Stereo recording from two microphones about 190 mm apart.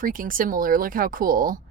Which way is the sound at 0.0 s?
45° right (ahead or behind).